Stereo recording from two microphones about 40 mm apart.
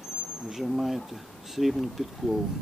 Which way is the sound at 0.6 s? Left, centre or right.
Centre.